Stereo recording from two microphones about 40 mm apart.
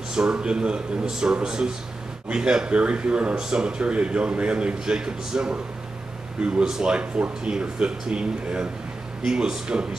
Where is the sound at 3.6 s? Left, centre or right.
Right.